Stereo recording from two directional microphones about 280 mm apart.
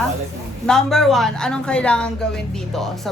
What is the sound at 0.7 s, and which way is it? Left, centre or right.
Speech, centre.